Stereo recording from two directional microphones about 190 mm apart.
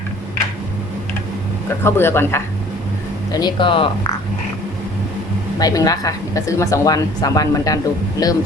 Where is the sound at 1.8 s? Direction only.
10° left (ahead or behind).